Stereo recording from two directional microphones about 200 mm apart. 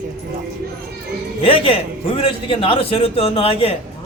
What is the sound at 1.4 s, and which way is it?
A man's voice, 30° left (ahead or behind).